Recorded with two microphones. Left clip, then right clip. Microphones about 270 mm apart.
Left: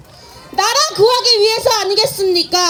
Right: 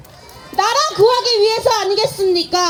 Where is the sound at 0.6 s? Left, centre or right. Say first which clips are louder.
Left 1 dB; centre.